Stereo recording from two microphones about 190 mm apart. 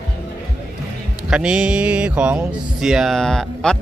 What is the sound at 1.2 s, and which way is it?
Speech, 5° right (ahead or behind).